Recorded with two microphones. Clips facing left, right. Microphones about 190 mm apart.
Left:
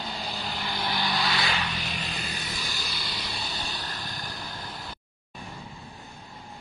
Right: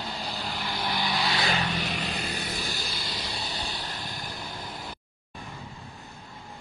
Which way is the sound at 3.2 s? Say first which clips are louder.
Right 1 dB; 40° right (ahead or behind).